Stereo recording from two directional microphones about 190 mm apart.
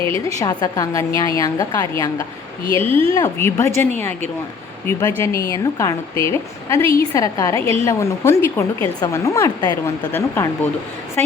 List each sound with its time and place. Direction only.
0.0 s speech: 30° right (ahead or behind)
0.3 s a woman's voice: 20° left (ahead or behind)
2.6 s speech: 30° right (ahead or behind)
3.1 s speech: 15° left (ahead or behind)